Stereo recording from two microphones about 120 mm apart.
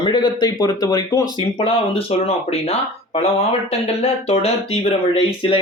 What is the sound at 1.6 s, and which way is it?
Speech, 50° left (ahead or behind).